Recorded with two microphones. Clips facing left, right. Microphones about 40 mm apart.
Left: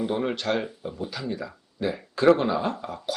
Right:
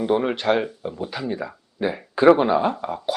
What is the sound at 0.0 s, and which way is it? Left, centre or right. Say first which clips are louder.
Speech: right 6 dB; centre.